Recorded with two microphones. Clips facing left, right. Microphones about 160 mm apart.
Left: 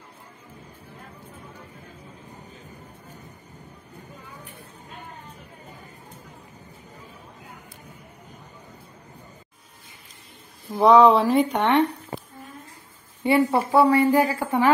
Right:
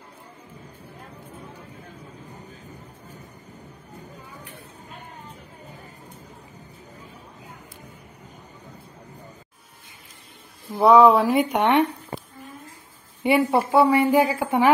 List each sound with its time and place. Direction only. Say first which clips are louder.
10.7 s a woman's voice: even; 10° right (ahead or behind)
13.2 s a woman's voice: even; 15° right (ahead or behind)